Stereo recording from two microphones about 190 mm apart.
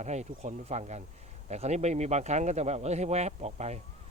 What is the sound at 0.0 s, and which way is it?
Speech, 35° right (ahead or behind).